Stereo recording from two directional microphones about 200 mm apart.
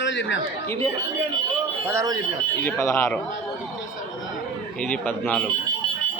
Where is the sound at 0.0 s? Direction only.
65° left (ahead or behind).